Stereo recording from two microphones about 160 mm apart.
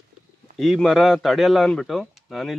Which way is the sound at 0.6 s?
Centre (ahead or behind).